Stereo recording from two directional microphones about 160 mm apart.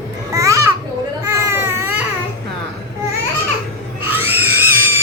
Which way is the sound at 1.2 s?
15° right (ahead or behind).